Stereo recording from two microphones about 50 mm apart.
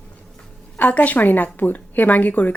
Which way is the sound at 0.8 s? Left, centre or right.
Left.